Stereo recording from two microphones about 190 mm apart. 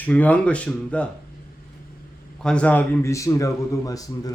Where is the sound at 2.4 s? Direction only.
5° left (ahead or behind).